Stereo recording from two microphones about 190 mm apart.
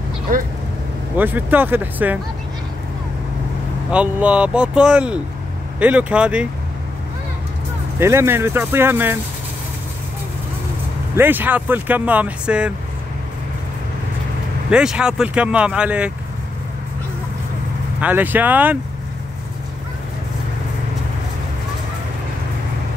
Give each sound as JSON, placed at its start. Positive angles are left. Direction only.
{"t": 0.3, "sound": "speech", "side_deg": -45}
{"t": 1.1, "sound": "speech", "side_deg": -10}
{"t": 3.9, "sound": "speech", "side_deg": -5}
{"t": 8.0, "sound": "speech", "side_deg": -15}
{"t": 11.1, "sound": "speech", "side_deg": -10}
{"t": 14.7, "sound": "speech", "side_deg": -5}
{"t": 18.0, "sound": "speech", "side_deg": -10}